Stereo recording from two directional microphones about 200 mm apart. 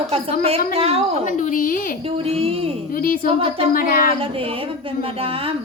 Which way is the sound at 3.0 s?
45° left (ahead or behind).